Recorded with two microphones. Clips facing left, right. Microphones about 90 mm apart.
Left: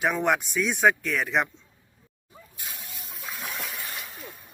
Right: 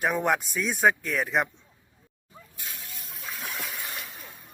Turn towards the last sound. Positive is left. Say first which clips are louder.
# left 1 dB
turn(degrees=0)  # may be behind; listen again after turning